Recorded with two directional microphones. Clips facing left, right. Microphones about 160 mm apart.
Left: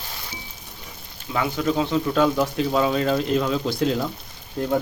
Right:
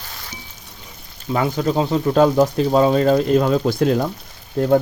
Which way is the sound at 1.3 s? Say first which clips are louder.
Right 4 dB; 40° right (ahead or behind).